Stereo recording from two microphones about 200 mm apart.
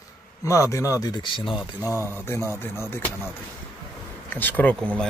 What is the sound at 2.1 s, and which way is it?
Speech, 10° left (ahead or behind).